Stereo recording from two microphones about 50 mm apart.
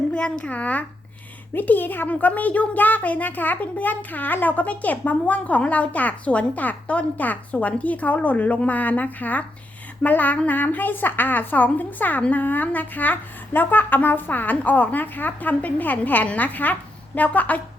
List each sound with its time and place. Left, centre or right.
0.1 s speech: left